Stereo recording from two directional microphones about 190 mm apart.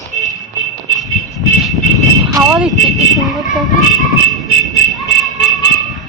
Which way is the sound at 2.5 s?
Centre (ahead or behind).